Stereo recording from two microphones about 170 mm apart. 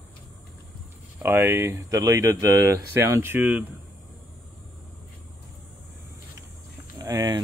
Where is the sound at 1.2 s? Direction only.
15° right (ahead or behind).